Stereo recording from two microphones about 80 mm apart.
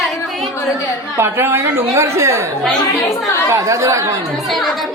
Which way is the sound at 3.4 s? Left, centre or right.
Right.